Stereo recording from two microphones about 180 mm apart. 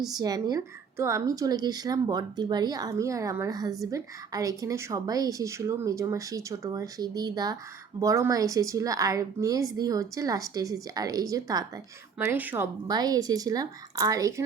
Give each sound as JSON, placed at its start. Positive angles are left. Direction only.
{"t": 0.1, "sound": "a woman's voice", "side_deg": -20}
{"t": 12.9, "sound": "a woman's voice", "side_deg": -20}